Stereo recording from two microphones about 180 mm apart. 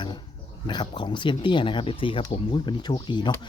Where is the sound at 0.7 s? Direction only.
25° left (ahead or behind).